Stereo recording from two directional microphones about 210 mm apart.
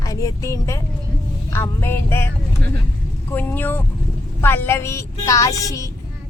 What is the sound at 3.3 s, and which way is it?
Speech, 10° left (ahead or behind).